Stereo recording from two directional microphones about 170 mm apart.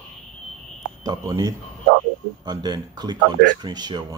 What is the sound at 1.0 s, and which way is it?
Speech, 25° right (ahead or behind).